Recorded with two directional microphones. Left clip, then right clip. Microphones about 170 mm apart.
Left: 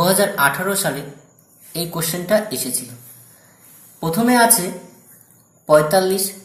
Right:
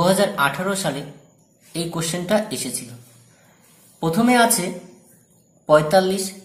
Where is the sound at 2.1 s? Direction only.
20° right (ahead or behind).